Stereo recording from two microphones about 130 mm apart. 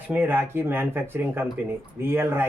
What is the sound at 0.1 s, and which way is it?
Speech, 15° right (ahead or behind).